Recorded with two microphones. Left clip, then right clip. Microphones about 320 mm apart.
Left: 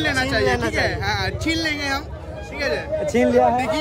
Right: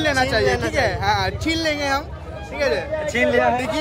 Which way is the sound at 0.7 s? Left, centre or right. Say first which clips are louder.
Right 3 dB; centre.